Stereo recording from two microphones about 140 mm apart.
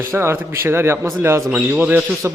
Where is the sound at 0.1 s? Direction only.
15° right (ahead or behind).